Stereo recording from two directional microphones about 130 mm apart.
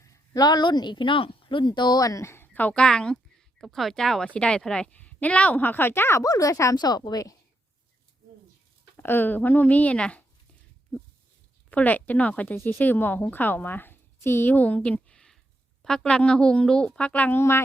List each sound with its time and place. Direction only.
0.0 s a woman's voice: 25° left (ahead or behind)
9.0 s speech: 15° left (ahead or behind)
11.7 s a woman's voice: 10° left (ahead or behind)